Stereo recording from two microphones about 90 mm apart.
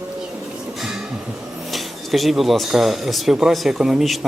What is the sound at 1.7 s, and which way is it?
Speech, centre (ahead or behind).